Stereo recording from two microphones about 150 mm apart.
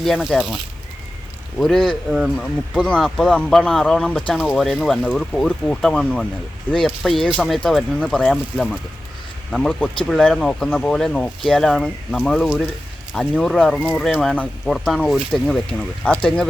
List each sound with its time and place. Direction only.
0.0 s speech: centre (ahead or behind)